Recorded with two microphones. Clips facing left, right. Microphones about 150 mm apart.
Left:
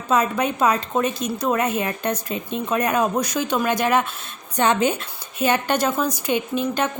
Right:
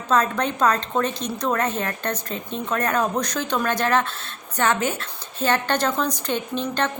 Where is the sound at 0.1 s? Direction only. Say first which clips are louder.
Left 1 dB; 10° left (ahead or behind).